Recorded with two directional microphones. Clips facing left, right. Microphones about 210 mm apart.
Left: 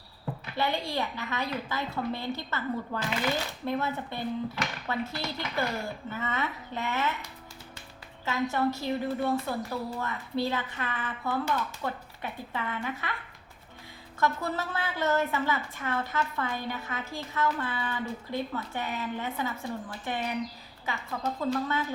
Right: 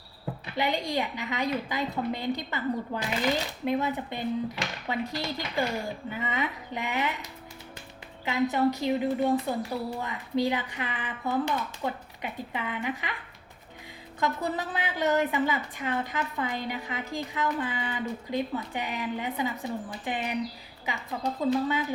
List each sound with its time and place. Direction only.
0.5 s a woman's voice: 15° right (ahead or behind)
14.2 s a woman's voice: 15° right (ahead or behind)